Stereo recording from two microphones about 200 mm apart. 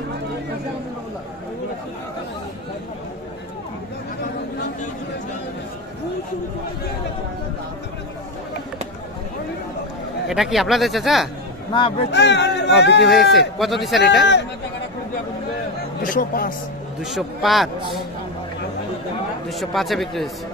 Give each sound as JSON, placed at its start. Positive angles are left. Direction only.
{"t": 10.2, "sound": "speech", "side_deg": 0}
{"t": 11.7, "sound": "speech", "side_deg": 25}
{"t": 12.1, "sound": "speech", "side_deg": 60}
{"t": 13.0, "sound": "speech", "side_deg": 0}
{"t": 16.0, "sound": "speech", "side_deg": 45}
{"t": 17.0, "sound": "speech", "side_deg": 0}
{"t": 19.6, "sound": "speech", "side_deg": 0}